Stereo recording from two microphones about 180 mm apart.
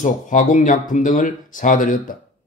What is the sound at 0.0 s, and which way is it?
Speech, 45° left (ahead or behind).